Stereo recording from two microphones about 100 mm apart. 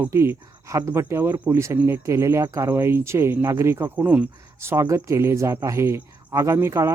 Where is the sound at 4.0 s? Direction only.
15° right (ahead or behind).